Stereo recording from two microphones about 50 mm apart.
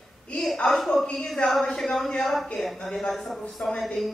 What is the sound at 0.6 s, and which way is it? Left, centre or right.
A man's voice, centre.